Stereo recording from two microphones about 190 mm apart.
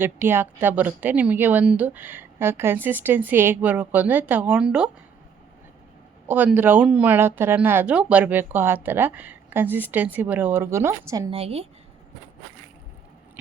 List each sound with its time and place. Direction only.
0.0 s speech: 10° right (ahead or behind)
6.2 s speech: 10° right (ahead or behind)
11.3 s a woman's voice: 30° right (ahead or behind)